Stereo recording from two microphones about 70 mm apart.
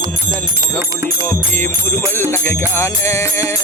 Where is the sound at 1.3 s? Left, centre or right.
Left.